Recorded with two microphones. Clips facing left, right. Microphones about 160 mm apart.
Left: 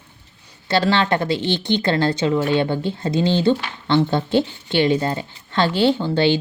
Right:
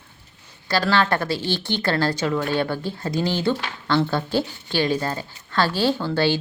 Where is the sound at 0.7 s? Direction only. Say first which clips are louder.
Left 2 dB; 25° left (ahead or behind).